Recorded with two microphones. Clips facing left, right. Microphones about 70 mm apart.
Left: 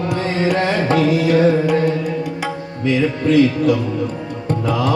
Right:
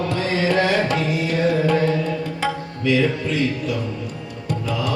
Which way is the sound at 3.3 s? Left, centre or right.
Left.